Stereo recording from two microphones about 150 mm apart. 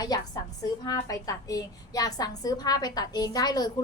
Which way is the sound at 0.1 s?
25° left (ahead or behind).